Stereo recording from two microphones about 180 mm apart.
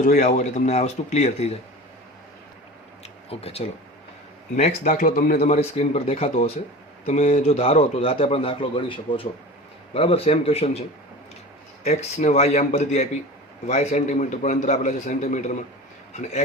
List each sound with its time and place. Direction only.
0.0 s speech: 45° left (ahead or behind)
3.0 s a sound: 35° left (ahead or behind)
4.5 s a man's voice: 45° left (ahead or behind)